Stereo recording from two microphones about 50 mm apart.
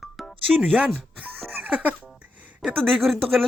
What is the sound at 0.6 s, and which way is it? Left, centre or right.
Speech, right.